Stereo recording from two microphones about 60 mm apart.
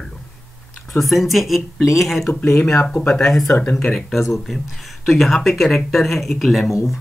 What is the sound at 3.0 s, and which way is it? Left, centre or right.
Speech, centre.